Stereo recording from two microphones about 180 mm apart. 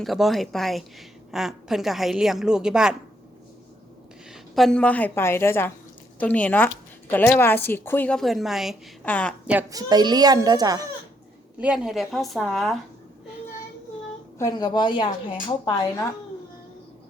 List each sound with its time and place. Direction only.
0.0 s a woman's voice: centre (ahead or behind)
4.5 s a woman's voice: 5° left (ahead or behind)
9.5 s speech: 15° right (ahead or behind)
11.5 s a woman's voice: 5° right (ahead or behind)
14.3 s a woman's voice: 20° left (ahead or behind)